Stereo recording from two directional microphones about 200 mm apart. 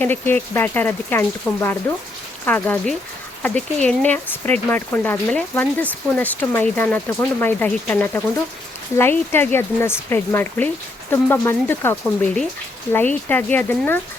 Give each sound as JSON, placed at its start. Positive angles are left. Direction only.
{"t": 0.0, "sound": "speech", "side_deg": 10}
{"t": 1.9, "sound": "speech", "side_deg": 10}